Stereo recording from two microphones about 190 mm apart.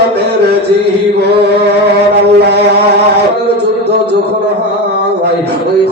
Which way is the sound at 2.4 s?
60° right (ahead or behind).